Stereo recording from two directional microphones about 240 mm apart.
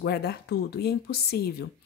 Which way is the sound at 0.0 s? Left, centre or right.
Left.